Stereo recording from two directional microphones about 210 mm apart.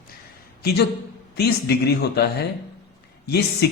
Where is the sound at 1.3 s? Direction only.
50° left (ahead or behind).